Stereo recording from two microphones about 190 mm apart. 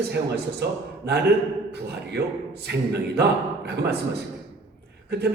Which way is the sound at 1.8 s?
60° right (ahead or behind).